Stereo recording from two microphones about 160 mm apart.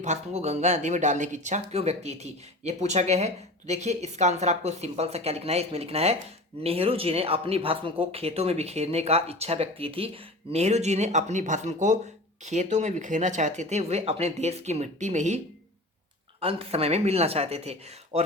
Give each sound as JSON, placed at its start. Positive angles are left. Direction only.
{"t": 0.0, "sound": "speech", "side_deg": -45}
{"t": 16.4, "sound": "speech", "side_deg": -35}